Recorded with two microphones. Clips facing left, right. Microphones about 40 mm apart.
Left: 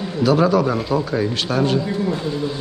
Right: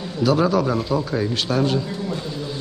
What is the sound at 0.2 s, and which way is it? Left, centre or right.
A man's voice, centre.